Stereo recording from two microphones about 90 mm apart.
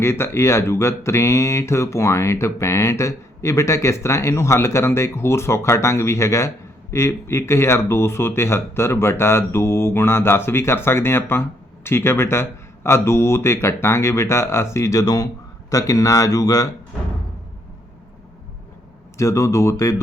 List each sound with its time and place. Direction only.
0.0 s speech: 30° left (ahead or behind)
19.1 s speech: 35° left (ahead or behind)